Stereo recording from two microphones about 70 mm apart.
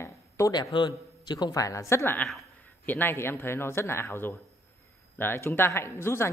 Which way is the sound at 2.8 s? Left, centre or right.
Left.